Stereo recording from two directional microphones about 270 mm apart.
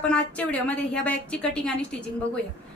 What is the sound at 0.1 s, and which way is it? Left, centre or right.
A woman's voice, centre.